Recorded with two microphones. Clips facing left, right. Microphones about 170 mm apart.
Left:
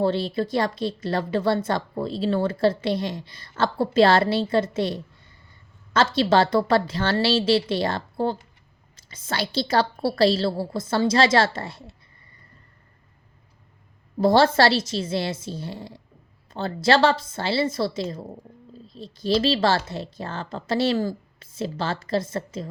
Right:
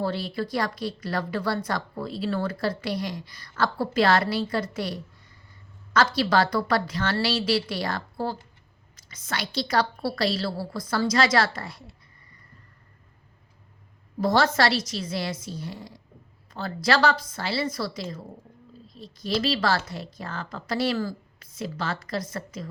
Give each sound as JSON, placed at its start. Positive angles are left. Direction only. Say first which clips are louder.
{"t": 0.0, "sound": "speech", "louder": "left 5 dB", "side_deg": 25}
{"t": 14.2, "sound": "speech", "louder": "left 5 dB", "side_deg": 30}